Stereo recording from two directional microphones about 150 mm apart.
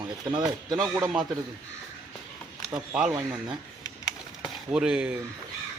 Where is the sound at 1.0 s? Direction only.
Centre (ahead or behind).